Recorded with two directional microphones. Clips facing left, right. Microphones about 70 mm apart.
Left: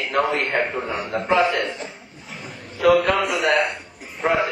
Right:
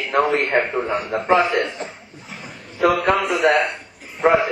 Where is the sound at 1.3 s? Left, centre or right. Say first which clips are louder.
Right 2 dB; right.